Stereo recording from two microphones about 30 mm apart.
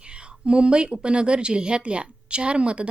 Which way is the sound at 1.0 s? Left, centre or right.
Right.